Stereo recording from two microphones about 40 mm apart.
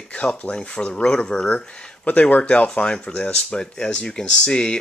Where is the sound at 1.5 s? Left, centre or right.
Left.